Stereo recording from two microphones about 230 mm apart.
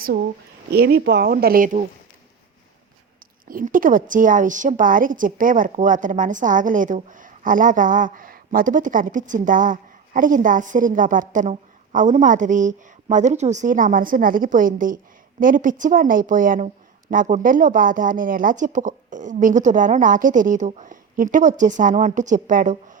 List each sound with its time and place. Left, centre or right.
0.7 s a woman's voice: right
3.4 s a woman's voice: right